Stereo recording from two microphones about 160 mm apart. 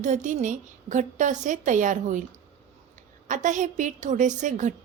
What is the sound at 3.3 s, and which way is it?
A woman's voice, 50° right (ahead or behind).